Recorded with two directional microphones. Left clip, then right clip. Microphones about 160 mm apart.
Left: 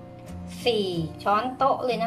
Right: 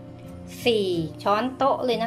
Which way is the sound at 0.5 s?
20° right (ahead or behind).